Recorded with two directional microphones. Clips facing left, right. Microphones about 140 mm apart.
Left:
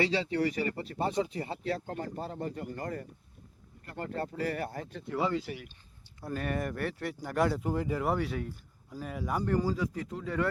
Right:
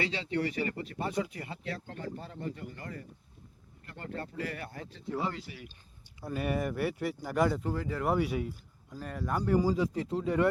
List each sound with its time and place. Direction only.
0.0 s speech: 35° left (ahead or behind); by 5.5 s 55° left (ahead or behind)
6.1 s speech: 5° right (ahead or behind)
7.6 s speech: 15° left (ahead or behind)
8.0 s speech: 10° right (ahead or behind)
8.9 s speech: 5° left (ahead or behind)
9.5 s speech: 10° right (ahead or behind)
9.7 s speech: 25° right (ahead or behind)